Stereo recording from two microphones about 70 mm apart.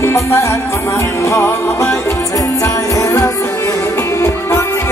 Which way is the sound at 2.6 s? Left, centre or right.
Left.